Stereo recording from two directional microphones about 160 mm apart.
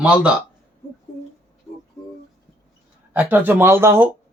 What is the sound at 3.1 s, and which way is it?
Speech, 10° right (ahead or behind).